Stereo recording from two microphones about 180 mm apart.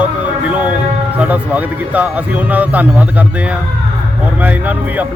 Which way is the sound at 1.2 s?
10° right (ahead or behind).